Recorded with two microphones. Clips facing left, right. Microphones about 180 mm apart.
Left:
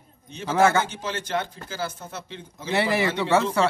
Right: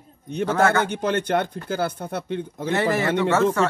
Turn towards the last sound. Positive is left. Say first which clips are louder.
# right 3 dB
turn(degrees=-50)  # may be behind; listen again after turning